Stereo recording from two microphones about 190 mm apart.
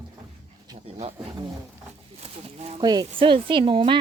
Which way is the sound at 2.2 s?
30° right (ahead or behind).